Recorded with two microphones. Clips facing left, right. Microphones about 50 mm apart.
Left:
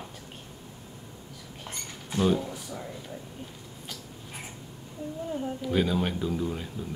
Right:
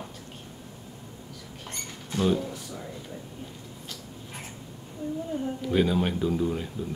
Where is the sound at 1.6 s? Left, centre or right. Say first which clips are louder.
Even; centre.